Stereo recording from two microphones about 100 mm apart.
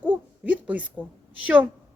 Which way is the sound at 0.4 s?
15° right (ahead or behind).